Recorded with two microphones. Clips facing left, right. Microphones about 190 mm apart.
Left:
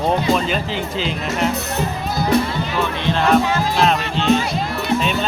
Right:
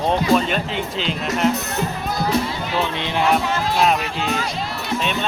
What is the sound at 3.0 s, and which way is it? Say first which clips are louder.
Music: left 3 dB; 15° right (ahead or behind).